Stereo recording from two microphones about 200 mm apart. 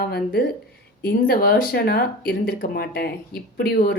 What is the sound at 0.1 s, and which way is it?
A woman's voice, 50° left (ahead or behind).